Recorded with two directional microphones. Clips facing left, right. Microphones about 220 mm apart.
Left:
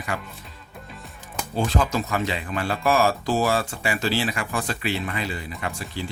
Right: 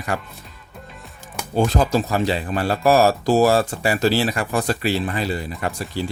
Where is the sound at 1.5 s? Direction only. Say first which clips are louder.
Right 5 dB; 35° right (ahead or behind).